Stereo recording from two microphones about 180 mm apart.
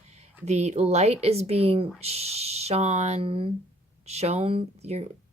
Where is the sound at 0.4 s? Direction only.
40° right (ahead or behind).